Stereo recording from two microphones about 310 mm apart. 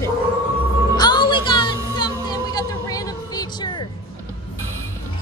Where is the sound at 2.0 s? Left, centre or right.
Centre.